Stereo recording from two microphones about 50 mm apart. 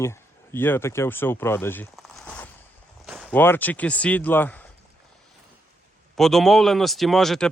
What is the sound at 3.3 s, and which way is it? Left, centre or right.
Speech, left.